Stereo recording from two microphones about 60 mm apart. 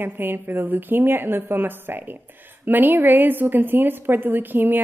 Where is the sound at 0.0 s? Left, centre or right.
Right.